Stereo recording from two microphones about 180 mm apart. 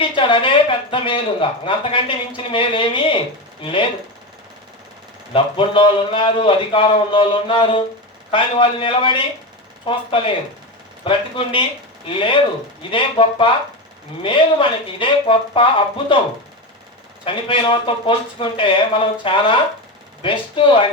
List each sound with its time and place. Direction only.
0.0 s speech: 30° left (ahead or behind)
5.3 s speech: 30° left (ahead or behind)
17.2 s speech: 30° left (ahead or behind)